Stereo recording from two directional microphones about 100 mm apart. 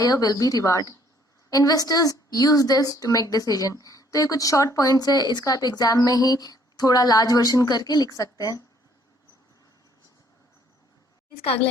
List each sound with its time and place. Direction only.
0.0 s a woman's voice: 35° left (ahead or behind)